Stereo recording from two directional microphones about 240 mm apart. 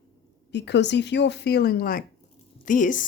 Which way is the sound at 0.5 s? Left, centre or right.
Left.